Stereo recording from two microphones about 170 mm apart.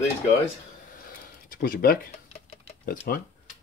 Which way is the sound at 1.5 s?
60° left (ahead or behind).